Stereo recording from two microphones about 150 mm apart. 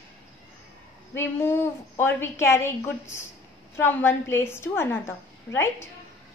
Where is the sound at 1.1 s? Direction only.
15° left (ahead or behind).